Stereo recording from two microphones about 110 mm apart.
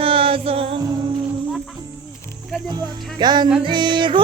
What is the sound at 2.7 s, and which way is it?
Speech, 40° right (ahead or behind).